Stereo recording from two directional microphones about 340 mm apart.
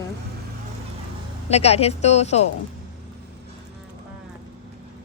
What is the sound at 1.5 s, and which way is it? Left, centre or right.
Speech, centre.